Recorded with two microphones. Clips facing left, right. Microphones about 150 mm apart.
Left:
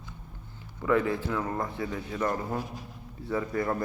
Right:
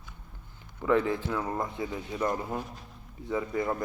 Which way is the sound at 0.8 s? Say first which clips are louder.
Even; 15° right (ahead or behind).